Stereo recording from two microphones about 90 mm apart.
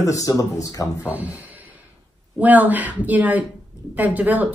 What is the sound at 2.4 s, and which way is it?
Speech, 20° right (ahead or behind).